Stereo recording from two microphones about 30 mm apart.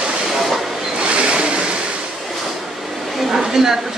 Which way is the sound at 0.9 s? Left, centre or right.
Right.